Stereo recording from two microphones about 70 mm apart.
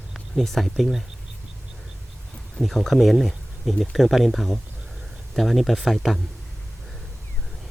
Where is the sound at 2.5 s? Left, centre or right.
Centre.